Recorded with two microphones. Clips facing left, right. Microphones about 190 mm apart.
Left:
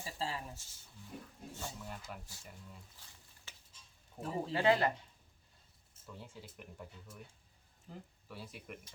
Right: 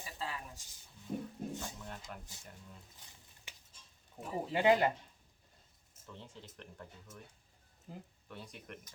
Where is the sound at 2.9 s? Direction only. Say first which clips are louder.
Right 1 dB; 20° right (ahead or behind).